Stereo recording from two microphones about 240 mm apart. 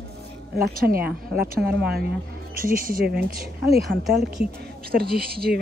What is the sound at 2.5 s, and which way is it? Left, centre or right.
Speech, right.